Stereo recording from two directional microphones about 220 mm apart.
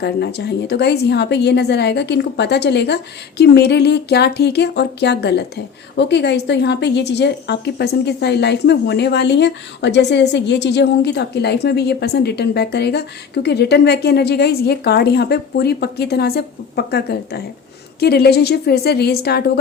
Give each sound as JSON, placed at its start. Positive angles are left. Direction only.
{"t": 0.0, "sound": "a woman's voice", "side_deg": 50}